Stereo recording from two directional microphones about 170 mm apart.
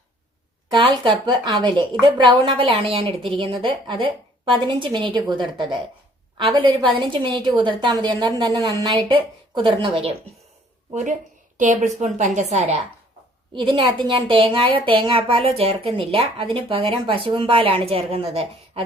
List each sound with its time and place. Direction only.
0.7 s a woman's voice: 25° right (ahead or behind)
11.5 s a woman's voice: 45° right (ahead or behind)
13.5 s a woman's voice: 30° right (ahead or behind)